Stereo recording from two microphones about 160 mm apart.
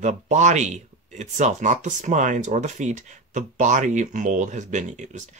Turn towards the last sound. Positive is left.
turn(degrees=-50)  # may be behind; listen again after turning